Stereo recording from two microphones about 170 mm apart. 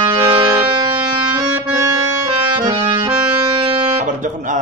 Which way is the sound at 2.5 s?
25° right (ahead or behind).